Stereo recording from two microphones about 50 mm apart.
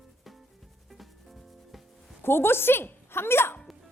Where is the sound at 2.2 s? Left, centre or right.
Left.